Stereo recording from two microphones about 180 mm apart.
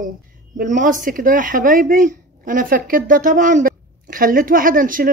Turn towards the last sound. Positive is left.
turn(degrees=-50)  # may be behind; listen again after turning